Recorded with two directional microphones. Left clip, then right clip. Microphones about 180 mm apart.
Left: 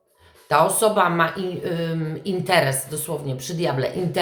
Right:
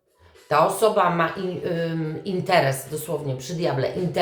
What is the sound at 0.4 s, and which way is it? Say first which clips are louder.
Speech: left 1 dB; 20° left (ahead or behind).